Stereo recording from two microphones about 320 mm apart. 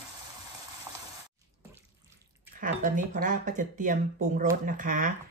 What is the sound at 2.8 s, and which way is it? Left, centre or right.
Speech, right.